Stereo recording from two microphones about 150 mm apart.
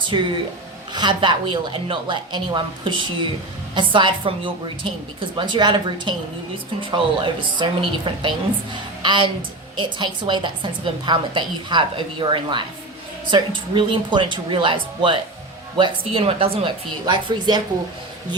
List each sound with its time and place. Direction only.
0.1 s a woman's voice: 30° right (ahead or behind)